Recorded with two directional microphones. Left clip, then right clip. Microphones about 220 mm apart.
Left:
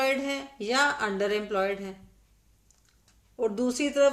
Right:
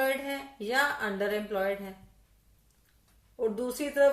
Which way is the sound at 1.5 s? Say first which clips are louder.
Left 2 dB; 40° left (ahead or behind).